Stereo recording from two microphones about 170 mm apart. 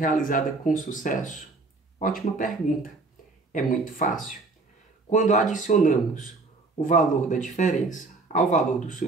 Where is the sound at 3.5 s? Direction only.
50° left (ahead or behind).